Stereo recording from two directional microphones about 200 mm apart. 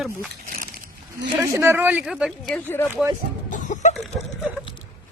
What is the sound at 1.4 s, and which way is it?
Speech, 15° right (ahead or behind).